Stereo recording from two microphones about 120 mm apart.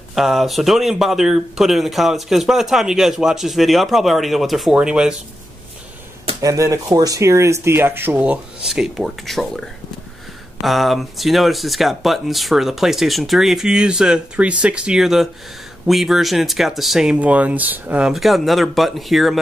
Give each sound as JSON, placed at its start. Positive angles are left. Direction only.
{"t": 0.1, "sound": "speech", "side_deg": 0}
{"t": 6.4, "sound": "speech", "side_deg": -25}
{"t": 18.1, "sound": "speech", "side_deg": 0}